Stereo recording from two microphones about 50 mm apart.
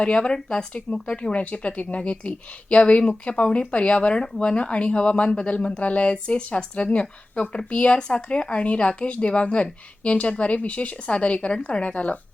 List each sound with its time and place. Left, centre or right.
0.0 s speech: left